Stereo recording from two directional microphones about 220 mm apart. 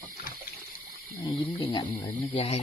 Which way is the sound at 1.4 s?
25° left (ahead or behind).